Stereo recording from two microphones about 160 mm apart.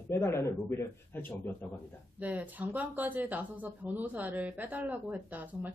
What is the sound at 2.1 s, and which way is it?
Speech, 10° right (ahead or behind).